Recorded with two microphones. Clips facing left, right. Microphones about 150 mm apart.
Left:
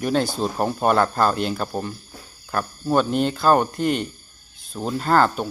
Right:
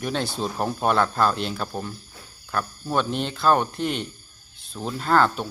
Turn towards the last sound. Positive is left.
turn(degrees=5)  # may be behind; listen again after turning